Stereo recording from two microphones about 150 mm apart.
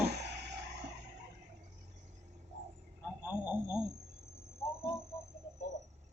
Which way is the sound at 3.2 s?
10° right (ahead or behind).